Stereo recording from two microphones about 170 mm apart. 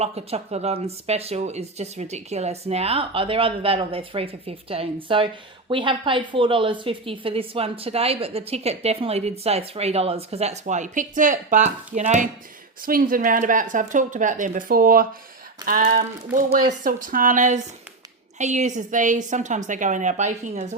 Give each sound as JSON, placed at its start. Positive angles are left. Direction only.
{"t": 0.0, "sound": "speech", "side_deg": -40}
{"t": 12.8, "sound": "speech", "side_deg": -55}